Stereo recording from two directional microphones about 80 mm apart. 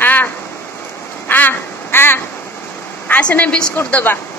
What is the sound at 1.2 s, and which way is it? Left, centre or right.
Quack, left.